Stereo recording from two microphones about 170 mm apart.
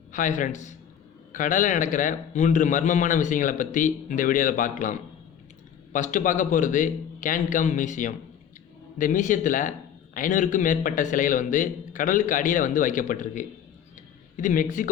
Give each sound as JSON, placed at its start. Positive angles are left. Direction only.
{"t": 0.1, "sound": "a man's voice", "side_deg": 50}